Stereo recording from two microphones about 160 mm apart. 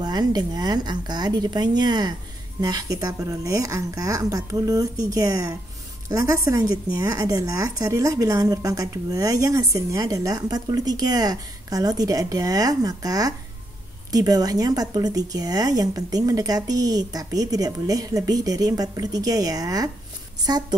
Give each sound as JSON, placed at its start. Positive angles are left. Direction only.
{"t": 0.0, "sound": "a woman's voice", "side_deg": -25}